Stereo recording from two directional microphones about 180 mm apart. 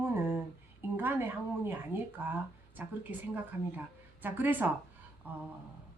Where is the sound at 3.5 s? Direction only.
10° right (ahead or behind).